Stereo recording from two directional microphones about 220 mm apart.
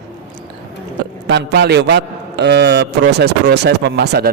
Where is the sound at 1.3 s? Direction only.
50° right (ahead or behind).